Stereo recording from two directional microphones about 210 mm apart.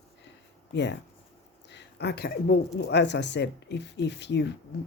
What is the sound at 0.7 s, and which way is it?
A woman's voice, 55° left (ahead or behind).